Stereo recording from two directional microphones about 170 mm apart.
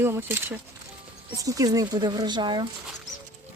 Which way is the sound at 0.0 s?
15° right (ahead or behind).